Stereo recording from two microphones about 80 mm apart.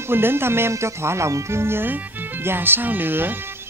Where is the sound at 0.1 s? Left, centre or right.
Right.